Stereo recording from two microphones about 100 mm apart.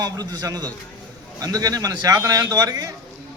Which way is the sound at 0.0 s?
40° right (ahead or behind).